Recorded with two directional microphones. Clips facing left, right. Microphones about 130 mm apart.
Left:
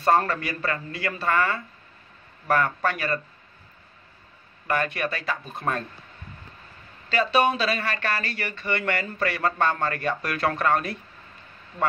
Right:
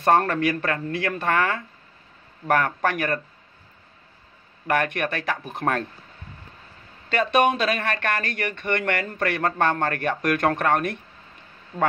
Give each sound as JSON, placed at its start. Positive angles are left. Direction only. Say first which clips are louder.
{"t": 0.0, "sound": "speech", "louder": "right 2 dB", "side_deg": -65}
{"t": 4.6, "sound": "speech", "louder": "right 2 dB", "side_deg": -65}
{"t": 7.1, "sound": "speech", "louder": "right 2 dB", "side_deg": -50}